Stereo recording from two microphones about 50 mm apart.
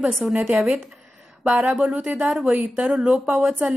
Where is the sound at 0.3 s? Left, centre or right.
Right.